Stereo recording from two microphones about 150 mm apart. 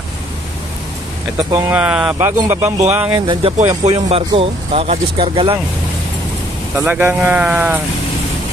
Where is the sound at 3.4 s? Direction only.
40° right (ahead or behind).